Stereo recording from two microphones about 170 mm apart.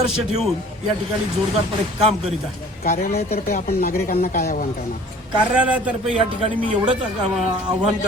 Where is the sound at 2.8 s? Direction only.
60° left (ahead or behind).